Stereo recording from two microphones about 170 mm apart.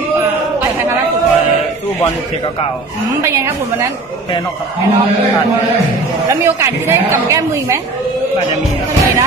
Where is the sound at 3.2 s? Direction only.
15° right (ahead or behind).